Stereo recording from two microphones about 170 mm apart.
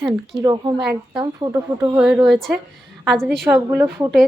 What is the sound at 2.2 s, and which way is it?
Speech, centre (ahead or behind).